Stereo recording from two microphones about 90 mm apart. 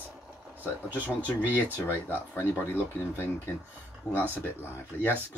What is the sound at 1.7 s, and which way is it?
Speech, 25° left (ahead or behind).